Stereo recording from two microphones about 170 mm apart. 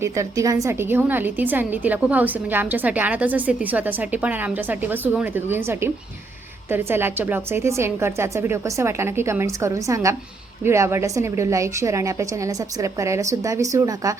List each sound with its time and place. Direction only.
0.0 s a woman's voice: 20° right (ahead or behind)